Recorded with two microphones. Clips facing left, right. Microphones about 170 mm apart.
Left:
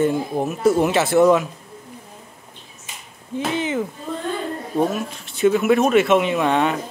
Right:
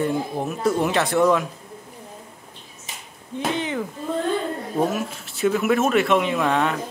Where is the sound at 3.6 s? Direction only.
5° left (ahead or behind).